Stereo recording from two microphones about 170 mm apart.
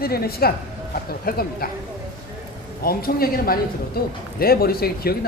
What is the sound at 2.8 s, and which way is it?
A man's voice, 60° left (ahead or behind).